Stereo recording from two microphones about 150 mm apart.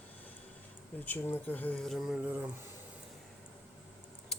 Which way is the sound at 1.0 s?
10° left (ahead or behind).